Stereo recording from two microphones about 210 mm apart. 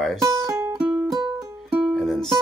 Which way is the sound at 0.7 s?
5° right (ahead or behind).